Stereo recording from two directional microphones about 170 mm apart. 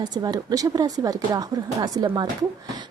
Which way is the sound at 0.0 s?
25° right (ahead or behind).